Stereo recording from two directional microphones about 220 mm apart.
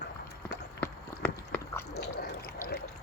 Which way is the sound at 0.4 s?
5° left (ahead or behind).